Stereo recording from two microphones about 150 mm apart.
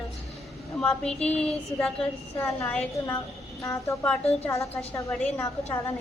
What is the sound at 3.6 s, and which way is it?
A woman's voice, 20° left (ahead or behind).